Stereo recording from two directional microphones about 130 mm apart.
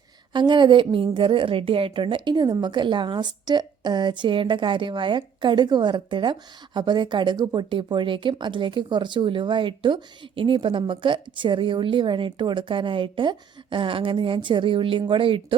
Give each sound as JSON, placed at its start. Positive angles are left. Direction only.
{"t": 0.3, "sound": "speech", "side_deg": -35}